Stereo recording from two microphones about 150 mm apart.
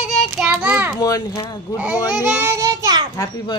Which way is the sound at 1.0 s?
25° left (ahead or behind).